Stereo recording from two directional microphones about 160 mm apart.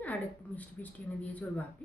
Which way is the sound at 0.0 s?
10° left (ahead or behind).